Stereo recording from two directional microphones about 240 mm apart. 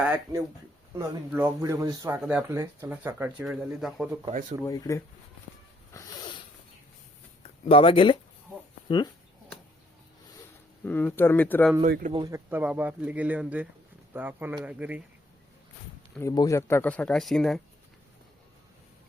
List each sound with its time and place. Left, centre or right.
0.0 s speech: centre
4.3 s speech: right
4.6 s speech: centre
5.9 s a sound: centre
7.7 s speech: left
10.8 s speech: centre
11.9 s speech: right
12.1 s speech: centre
16.1 s speech: centre